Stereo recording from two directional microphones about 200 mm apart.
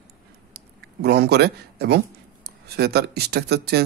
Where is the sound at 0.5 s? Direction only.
55° right (ahead or behind).